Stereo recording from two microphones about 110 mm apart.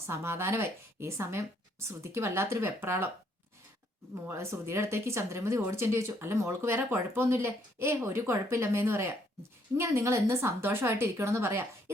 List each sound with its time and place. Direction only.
0.0 s speech: 25° right (ahead or behind)
4.3 s speech: 25° right (ahead or behind)